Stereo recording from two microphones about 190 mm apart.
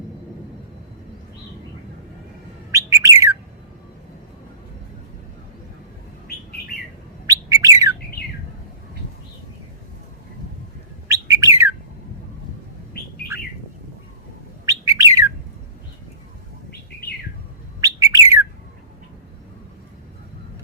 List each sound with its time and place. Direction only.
2.7 s bird: 15° right (ahead or behind)
7.3 s bird: 15° right (ahead or behind)
11.1 s bird: 15° right (ahead or behind)
13.3 s bird: 15° right (ahead or behind)
14.7 s bird: 15° right (ahead or behind)
17.7 s bird: 20° right (ahead or behind)